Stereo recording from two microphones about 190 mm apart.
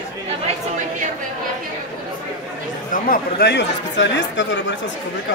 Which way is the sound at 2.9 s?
50° left (ahead or behind).